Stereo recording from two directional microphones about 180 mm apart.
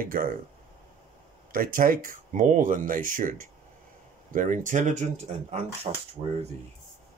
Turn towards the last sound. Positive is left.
turn(degrees=-35)  # may be behind; listen again after turning